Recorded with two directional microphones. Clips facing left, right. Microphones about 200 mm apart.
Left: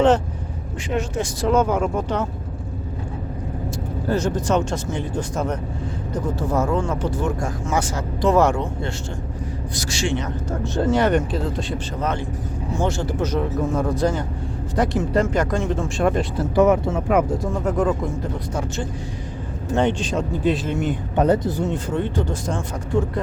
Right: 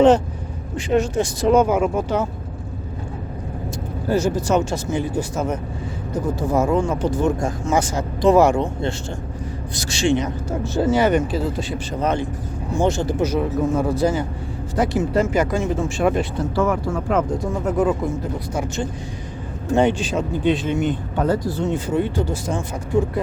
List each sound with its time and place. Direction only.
0.8 s speech: 35° right (ahead or behind)
1.4 s speech: 15° right (ahead or behind)
4.1 s speech: 10° right (ahead or behind); by 10.2 s 25° right (ahead or behind)
10.2 s speech: 5° right (ahead or behind)
12.8 s speech: 15° right (ahead or behind)
16.6 s speech: 20° left (ahead or behind)
17.2 s speech: centre (ahead or behind)
19.7 s speech: 10° right (ahead or behind)
21.2 s speech: 20° left (ahead or behind)
21.6 s speech: 5° right (ahead or behind)